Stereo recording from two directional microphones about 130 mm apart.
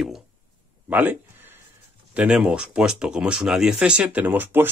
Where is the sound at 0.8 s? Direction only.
15° right (ahead or behind).